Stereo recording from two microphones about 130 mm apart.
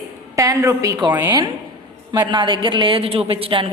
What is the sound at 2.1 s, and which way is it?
A woman's voice, 35° right (ahead or behind).